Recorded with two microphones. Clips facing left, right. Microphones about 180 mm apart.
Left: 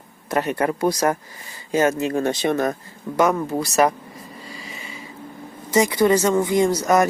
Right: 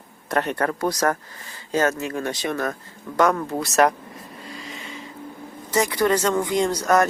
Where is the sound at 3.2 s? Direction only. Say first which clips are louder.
Left 1 dB; 5° left (ahead or behind).